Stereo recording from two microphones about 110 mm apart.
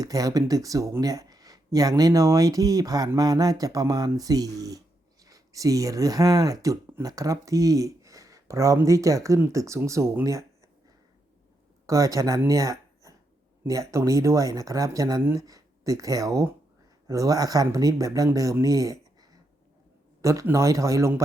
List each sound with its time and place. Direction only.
0.0 s speech: 35° right (ahead or behind)
11.9 s speech: 30° right (ahead or behind)
12.5 s a sound: 30° right (ahead or behind)
13.7 s speech: 30° right (ahead or behind)